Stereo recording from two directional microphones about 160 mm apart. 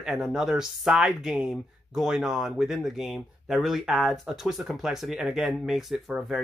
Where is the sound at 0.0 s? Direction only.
5° right (ahead or behind).